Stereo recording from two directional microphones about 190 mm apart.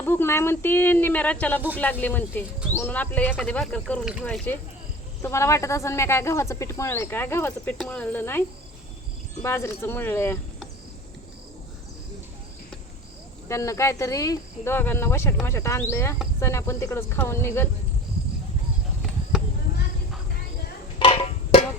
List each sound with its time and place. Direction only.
0.0 s speech: 10° left (ahead or behind)
13.5 s speech: 15° left (ahead or behind)
21.0 s music: 30° left (ahead or behind)